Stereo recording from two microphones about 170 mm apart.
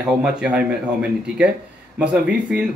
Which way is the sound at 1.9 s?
5° right (ahead or behind).